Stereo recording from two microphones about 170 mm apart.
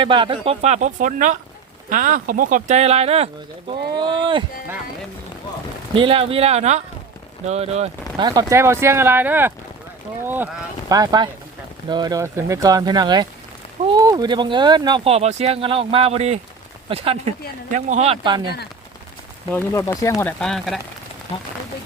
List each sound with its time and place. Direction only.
0.0 s speech: 30° right (ahead or behind)
5.9 s speech: 30° right (ahead or behind)
8.2 s speech: 25° right (ahead or behind)
17.7 s speech: 45° right (ahead or behind); by 18.5 s 25° right (ahead or behind)
19.5 s speech: 15° left (ahead or behind)
20.4 s speech: centre (ahead or behind)